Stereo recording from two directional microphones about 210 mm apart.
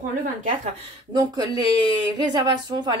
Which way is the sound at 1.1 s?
20° right (ahead or behind).